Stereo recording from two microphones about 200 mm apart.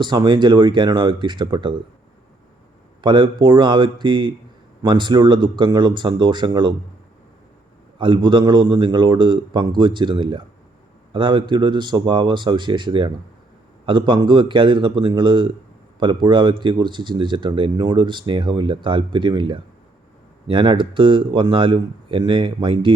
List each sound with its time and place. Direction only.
0.0 s speech: 20° right (ahead or behind)
3.0 s speech: 25° right (ahead or behind)
7.9 s speech: 25° right (ahead or behind)